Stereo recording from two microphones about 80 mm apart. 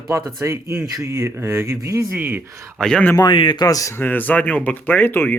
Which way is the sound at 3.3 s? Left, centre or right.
Left.